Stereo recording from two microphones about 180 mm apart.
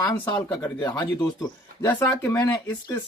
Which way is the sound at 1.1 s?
20° left (ahead or behind).